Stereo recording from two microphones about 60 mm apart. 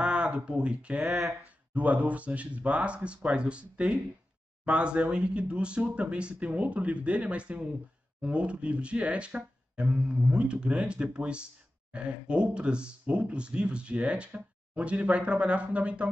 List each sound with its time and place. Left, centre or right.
0.0 s speech: centre
1.0 s speech: centre
1.4 s speech: right